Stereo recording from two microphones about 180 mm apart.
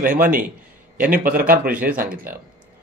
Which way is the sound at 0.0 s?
50° right (ahead or behind).